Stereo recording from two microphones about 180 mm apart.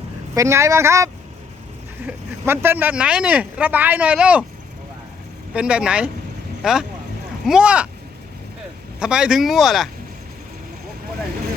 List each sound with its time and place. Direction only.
0.3 s speech: 15° right (ahead or behind)
5.5 s a man's voice: 5° right (ahead or behind)
9.0 s a man's voice: 5° right (ahead or behind)